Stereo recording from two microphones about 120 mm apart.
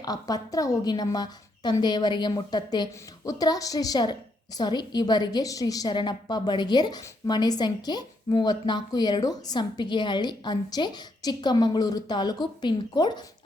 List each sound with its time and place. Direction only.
0.0 s a woman's voice: 30° left (ahead or behind)